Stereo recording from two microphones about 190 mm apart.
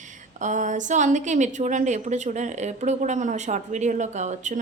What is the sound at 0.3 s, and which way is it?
A woman's voice, 40° right (ahead or behind).